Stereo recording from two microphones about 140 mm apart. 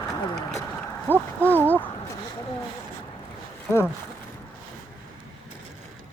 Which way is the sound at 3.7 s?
20° left (ahead or behind).